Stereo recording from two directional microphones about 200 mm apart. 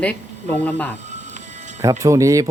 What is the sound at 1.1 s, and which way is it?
Music, 35° right (ahead or behind).